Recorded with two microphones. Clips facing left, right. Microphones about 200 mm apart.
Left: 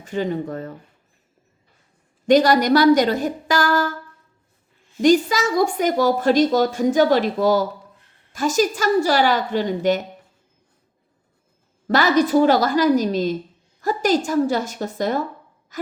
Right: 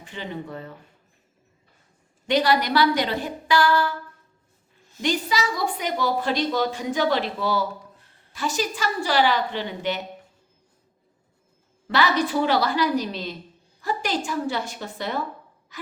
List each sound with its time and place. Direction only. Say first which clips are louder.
0.0 s a woman's voice: left 10 dB; 45° left (ahead or behind)
2.2 s a woman's voice: left 6 dB; 45° left (ahead or behind)
4.9 s a woman's voice: left 9 dB; 45° left (ahead or behind)
11.9 s a woman's voice: left 6 dB; 45° left (ahead or behind)
15.7 s gasp: left 9 dB; 45° left (ahead or behind)